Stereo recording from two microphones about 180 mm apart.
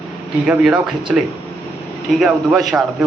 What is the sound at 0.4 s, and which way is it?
Speech, 5° right (ahead or behind).